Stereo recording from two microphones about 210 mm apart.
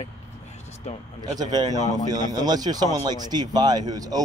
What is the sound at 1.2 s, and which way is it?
Speech, 20° right (ahead or behind).